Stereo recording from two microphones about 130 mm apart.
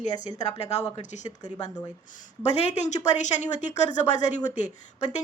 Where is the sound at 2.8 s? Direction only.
65° left (ahead or behind).